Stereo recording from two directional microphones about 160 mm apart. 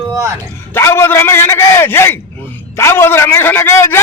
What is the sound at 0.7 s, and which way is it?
A man's voice, 15° left (ahead or behind).